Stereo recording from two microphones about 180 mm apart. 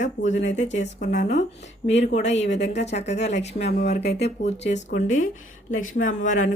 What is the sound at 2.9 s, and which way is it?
Speech, 40° left (ahead or behind).